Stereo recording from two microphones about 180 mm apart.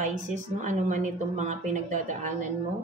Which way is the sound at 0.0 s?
45° right (ahead or behind).